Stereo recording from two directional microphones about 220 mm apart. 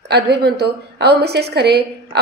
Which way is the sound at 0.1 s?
45° right (ahead or behind).